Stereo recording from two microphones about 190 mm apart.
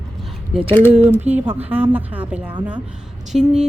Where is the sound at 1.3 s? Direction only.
10° right (ahead or behind).